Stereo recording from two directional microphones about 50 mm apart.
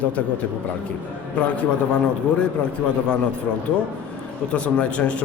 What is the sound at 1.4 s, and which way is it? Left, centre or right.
Speech, left.